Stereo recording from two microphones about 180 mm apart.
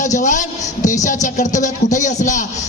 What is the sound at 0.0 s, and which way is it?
A man's voice, 45° left (ahead or behind).